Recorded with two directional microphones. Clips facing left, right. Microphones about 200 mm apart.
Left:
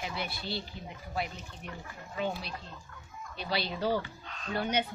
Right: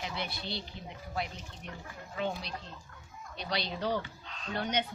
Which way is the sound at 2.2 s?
5° left (ahead or behind).